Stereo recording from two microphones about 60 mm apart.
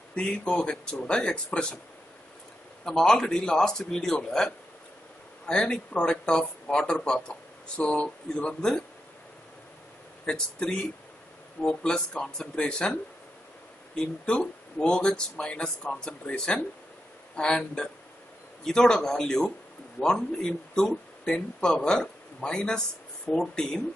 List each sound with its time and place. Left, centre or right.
0.1 s speech: centre
2.8 s speech: centre
5.5 s speech: centre
10.2 s speech: centre
13.9 s speech: centre